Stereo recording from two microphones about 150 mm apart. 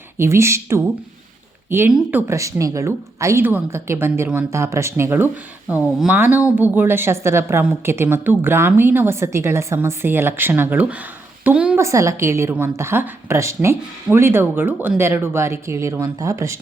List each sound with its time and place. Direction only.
0.2 s a woman's voice: 15° right (ahead or behind)
1.9 s a woman's voice: 10° right (ahead or behind)
11.8 s a woman's voice: 20° right (ahead or behind)